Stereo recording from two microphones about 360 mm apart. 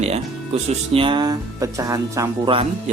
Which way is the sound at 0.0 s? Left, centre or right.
Centre.